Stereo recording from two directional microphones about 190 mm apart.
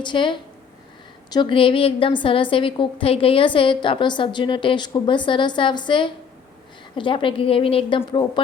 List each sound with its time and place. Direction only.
0.0 s a woman's voice: 25° left (ahead or behind)